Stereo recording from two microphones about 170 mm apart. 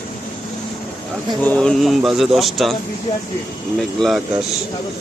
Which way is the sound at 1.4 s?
5° left (ahead or behind).